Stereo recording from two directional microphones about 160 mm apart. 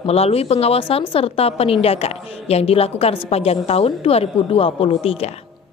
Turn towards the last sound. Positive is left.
turn(degrees=40)  # may be behind; listen again after turning